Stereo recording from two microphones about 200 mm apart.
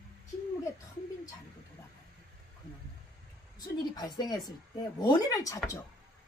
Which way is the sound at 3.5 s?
20° left (ahead or behind).